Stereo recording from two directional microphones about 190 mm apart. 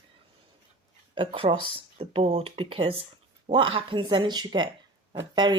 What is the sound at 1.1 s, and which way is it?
A woman's voice, 30° right (ahead or behind).